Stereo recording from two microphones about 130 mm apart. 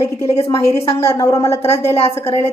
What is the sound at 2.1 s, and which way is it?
Speech, 20° left (ahead or behind).